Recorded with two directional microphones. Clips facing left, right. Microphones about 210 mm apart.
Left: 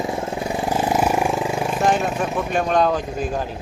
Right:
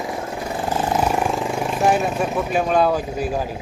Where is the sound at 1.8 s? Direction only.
5° right (ahead or behind).